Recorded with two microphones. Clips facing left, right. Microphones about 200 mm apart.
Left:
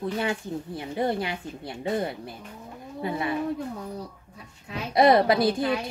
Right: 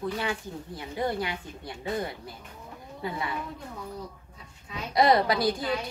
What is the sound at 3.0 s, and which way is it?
Speech, 25° left (ahead or behind).